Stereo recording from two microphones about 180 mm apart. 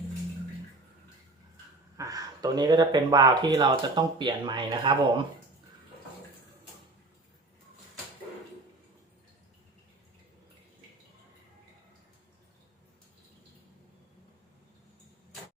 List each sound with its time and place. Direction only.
2.0 s speech: 20° right (ahead or behind)